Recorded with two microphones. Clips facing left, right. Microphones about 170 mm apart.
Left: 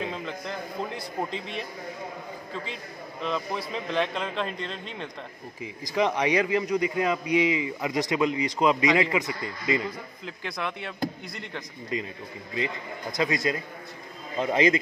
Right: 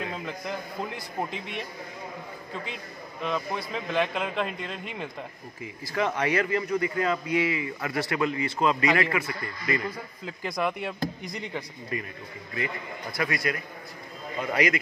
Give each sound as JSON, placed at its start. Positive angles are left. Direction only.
{"t": 0.2, "sound": "a man's voice", "side_deg": -5}
{"t": 5.6, "sound": "a man's voice", "side_deg": 15}
{"t": 10.2, "sound": "speech", "side_deg": -10}
{"t": 11.9, "sound": "a man's voice", "side_deg": 20}